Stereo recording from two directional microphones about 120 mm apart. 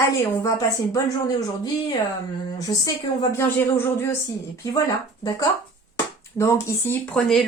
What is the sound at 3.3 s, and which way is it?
Speech, 20° left (ahead or behind).